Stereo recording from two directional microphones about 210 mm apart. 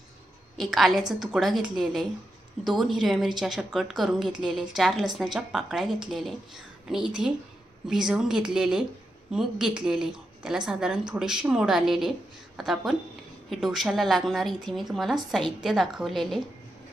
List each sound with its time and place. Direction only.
0.6 s a woman's voice: centre (ahead or behind)